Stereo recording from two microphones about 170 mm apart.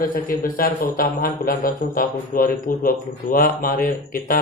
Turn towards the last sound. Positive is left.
turn(degrees=55)  # may be behind; listen again after turning